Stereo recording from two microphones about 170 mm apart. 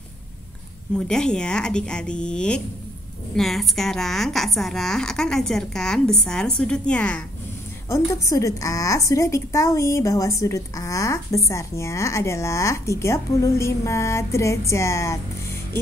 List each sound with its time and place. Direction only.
0.9 s a woman's voice: 5° left (ahead or behind)
7.9 s a woman's voice: 20° left (ahead or behind)